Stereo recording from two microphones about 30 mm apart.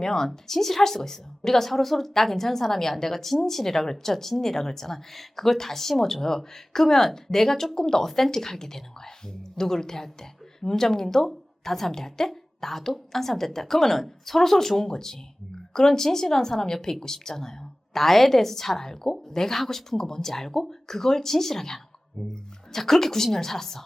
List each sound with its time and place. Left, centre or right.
0.0 s a woman's voice: centre